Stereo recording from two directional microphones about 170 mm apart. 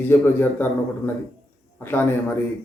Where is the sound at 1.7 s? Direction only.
10° left (ahead or behind).